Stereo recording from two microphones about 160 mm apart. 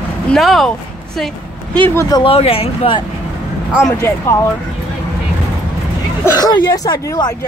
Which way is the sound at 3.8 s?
15° left (ahead or behind).